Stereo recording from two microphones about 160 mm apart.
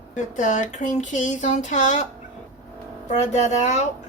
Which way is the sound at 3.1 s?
45° left (ahead or behind).